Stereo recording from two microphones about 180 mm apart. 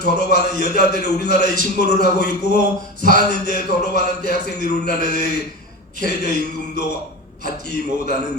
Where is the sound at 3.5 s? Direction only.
60° left (ahead or behind).